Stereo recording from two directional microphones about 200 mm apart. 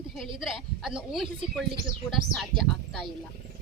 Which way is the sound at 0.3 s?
Centre (ahead or behind).